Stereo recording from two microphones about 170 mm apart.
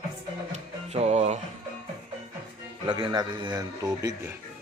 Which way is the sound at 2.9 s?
25° right (ahead or behind).